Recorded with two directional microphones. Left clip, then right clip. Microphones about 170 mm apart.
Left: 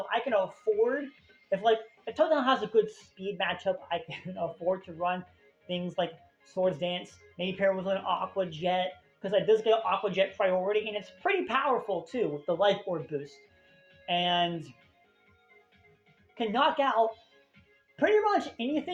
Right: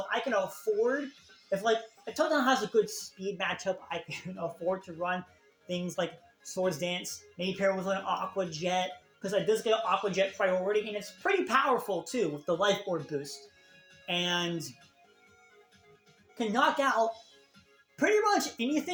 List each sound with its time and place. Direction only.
0.1 s speech: 50° right (ahead or behind)
6.6 s speech: 70° right (ahead or behind); by 11.3 s 50° right (ahead or behind)
11.5 s speech: 60° right (ahead or behind)
14.0 s speech: 60° right (ahead or behind)
16.6 s speech: 50° right (ahead or behind)
17.9 s speech: 60° right (ahead or behind)